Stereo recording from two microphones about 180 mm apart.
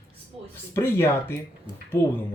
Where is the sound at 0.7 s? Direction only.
15° left (ahead or behind).